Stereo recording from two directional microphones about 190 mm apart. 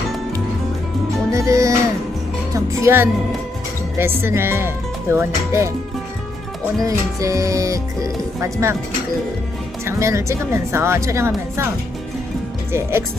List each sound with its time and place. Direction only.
1.3 s music: 15° right (ahead or behind)
2.5 s speech: 15° right (ahead or behind)
4.2 s speech: 10° right (ahead or behind)
6.8 s speech: 15° right (ahead or behind)
9.8 s speech: 15° right (ahead or behind)
12.7 s speech: 15° right (ahead or behind)